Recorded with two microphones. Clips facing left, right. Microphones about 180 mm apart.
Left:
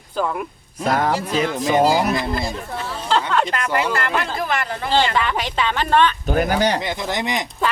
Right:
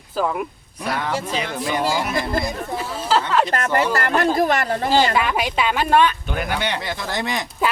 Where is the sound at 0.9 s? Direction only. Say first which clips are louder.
Left 4 dB; 45° left (ahead or behind).